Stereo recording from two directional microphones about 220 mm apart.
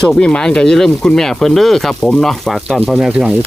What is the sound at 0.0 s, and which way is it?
Speech, 5° left (ahead or behind).